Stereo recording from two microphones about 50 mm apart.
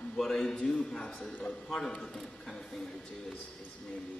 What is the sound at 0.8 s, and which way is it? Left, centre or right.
Speech, centre.